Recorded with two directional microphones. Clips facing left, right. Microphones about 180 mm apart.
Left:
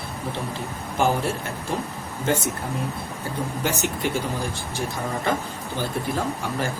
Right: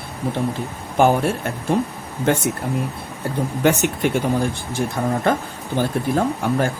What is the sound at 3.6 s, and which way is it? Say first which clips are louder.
Speech: right 9 dB; 65° right (ahead or behind).